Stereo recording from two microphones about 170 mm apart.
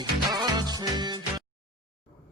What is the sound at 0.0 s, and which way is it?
Music, 25° right (ahead or behind).